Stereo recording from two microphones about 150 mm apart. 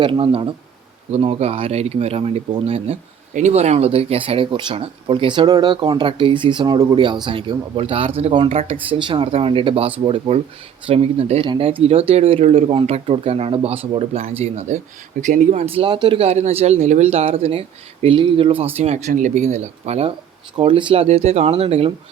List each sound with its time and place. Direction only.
0.0 s speech: 35° right (ahead or behind)
15.6 s speech: 40° right (ahead or behind)
18.8 s speech: 50° right (ahead or behind)
20.6 s speech: 35° right (ahead or behind)